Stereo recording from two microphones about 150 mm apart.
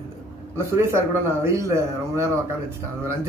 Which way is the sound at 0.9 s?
20° right (ahead or behind).